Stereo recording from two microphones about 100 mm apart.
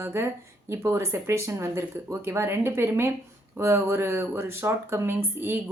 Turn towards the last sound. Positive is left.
turn(degrees=-20)  # may be behind; listen again after turning